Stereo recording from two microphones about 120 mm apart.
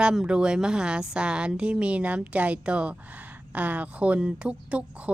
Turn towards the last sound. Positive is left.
turn(degrees=-10)  # may be behind; listen again after turning